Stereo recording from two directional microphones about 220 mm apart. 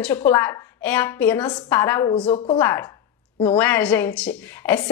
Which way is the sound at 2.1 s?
25° left (ahead or behind).